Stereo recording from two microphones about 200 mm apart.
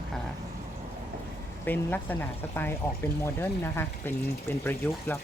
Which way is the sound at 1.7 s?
10° left (ahead or behind).